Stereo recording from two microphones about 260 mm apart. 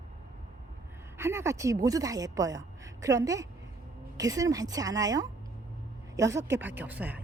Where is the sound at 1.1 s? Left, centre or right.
Centre.